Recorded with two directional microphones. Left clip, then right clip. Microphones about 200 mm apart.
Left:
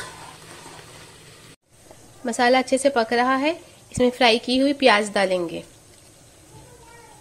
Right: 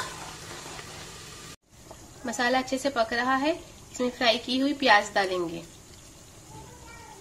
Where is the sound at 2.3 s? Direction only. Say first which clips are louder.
Left 8 dB; 30° left (ahead or behind).